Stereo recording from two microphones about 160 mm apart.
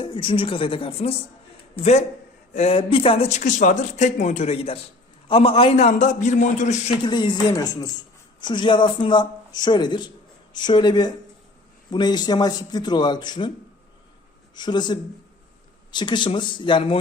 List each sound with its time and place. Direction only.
0.0 s speech: 30° left (ahead or behind); by 6.9 s 50° left (ahead or behind)
7.0 s speech: 30° left (ahead or behind)
14.5 s speech: 25° left (ahead or behind)